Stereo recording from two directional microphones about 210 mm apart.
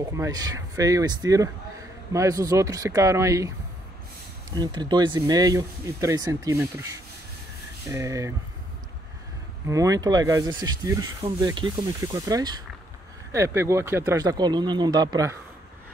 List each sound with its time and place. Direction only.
0.0 s speech: 15° right (ahead or behind)
4.6 s speech: 20° right (ahead or behind)
9.7 s speech: 15° right (ahead or behind)